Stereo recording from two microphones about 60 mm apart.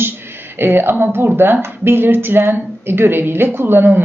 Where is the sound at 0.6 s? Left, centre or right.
Right.